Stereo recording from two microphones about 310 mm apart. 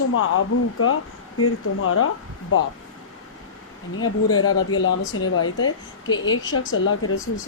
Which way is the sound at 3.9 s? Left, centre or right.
Left.